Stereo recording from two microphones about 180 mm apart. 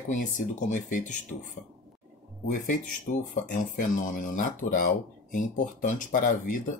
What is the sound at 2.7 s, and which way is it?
Speech, 45° left (ahead or behind).